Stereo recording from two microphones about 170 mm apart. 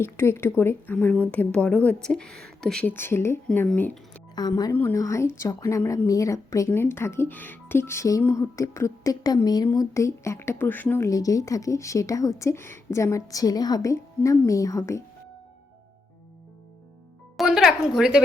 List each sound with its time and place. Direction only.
0.0 s a woman's voice: 15° left (ahead or behind)
4.4 s a woman's voice: 25° left (ahead or behind)
4.7 s a woman's voice: 10° left (ahead or behind)
17.3 s speech: centre (ahead or behind)